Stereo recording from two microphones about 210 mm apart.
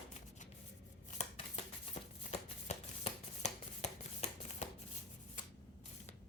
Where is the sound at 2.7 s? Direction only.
30° left (ahead or behind).